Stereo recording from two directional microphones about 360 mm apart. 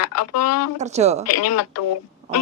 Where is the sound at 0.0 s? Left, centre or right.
Left.